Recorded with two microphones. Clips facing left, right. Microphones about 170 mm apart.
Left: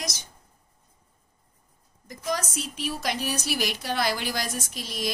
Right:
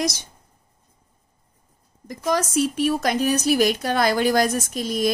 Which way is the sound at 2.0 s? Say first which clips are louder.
Right 7 dB; 70° right (ahead or behind).